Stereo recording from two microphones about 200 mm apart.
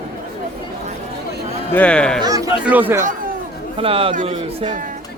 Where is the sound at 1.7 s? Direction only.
5° left (ahead or behind).